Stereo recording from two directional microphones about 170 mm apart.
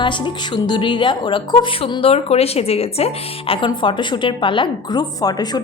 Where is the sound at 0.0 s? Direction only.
25° left (ahead or behind).